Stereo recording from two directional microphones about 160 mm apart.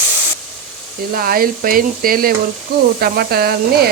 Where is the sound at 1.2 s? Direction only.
65° right (ahead or behind).